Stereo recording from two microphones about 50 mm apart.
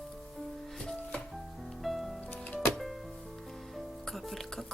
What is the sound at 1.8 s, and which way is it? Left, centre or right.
Music, centre.